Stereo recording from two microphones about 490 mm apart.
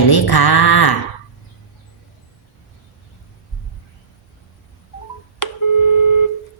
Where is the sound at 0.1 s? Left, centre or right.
Left.